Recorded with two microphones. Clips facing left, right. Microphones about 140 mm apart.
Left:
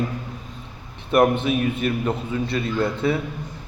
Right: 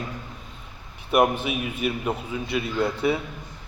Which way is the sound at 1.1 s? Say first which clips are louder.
Left 3 dB; 10° right (ahead or behind).